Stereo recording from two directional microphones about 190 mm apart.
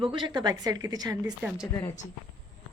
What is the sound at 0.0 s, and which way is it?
A woman's voice, 25° right (ahead or behind).